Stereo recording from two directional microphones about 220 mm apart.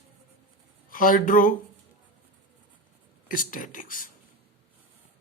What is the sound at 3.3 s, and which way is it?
Speech, 40° left (ahead or behind).